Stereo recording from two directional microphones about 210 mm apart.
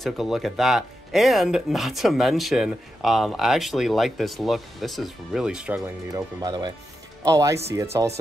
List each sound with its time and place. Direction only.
0.0 s speech: centre (ahead or behind)
6.0 s speech: 20° right (ahead or behind)